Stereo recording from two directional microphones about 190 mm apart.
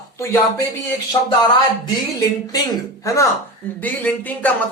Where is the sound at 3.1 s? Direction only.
15° left (ahead or behind).